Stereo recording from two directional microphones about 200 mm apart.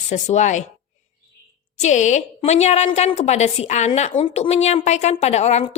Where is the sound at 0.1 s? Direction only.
35° left (ahead or behind).